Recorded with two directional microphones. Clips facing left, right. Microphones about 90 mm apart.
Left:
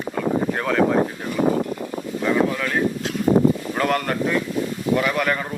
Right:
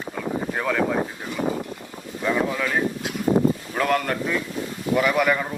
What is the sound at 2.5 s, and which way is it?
Speech, 10° right (ahead or behind).